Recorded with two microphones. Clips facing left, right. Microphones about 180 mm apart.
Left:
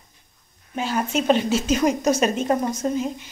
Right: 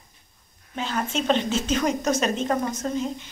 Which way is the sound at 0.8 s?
10° left (ahead or behind).